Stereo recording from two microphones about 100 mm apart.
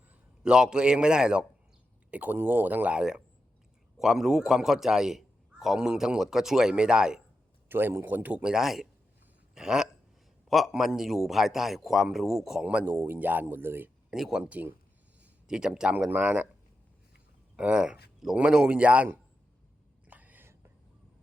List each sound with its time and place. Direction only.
0.4 s a man's voice: 10° right (ahead or behind)
7.7 s a man's voice: 20° right (ahead or behind)
14.1 s a man's voice: 5° right (ahead or behind)
17.6 s a man's voice: 10° right (ahead or behind)
20.1 s whispering: 15° right (ahead or behind)